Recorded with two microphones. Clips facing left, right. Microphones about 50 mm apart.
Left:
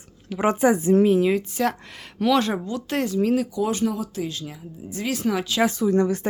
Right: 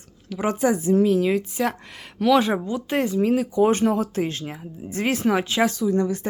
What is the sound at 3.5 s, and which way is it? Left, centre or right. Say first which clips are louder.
Speech: right 5 dB; right.